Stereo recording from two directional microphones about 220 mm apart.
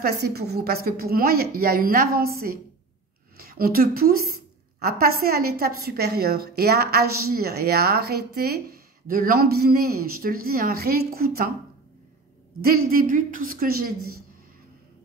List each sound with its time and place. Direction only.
0.0 s a woman's voice: 45° right (ahead or behind)
12.6 s a woman's voice: 40° right (ahead or behind)